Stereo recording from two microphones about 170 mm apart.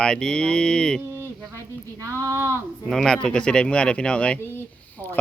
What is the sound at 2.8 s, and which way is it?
A man's voice, 5° left (ahead or behind).